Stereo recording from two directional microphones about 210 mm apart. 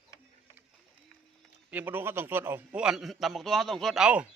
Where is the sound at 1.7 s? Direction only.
10° right (ahead or behind).